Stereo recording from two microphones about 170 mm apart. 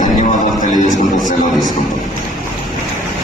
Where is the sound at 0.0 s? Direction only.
50° left (ahead or behind).